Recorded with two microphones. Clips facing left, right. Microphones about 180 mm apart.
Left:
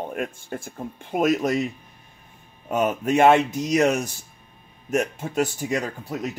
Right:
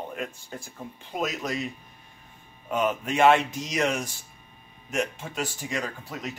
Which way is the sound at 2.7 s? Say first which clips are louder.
Left 5 dB; 45° left (ahead or behind).